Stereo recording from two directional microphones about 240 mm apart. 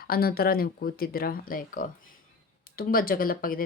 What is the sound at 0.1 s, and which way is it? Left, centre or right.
Speech, left.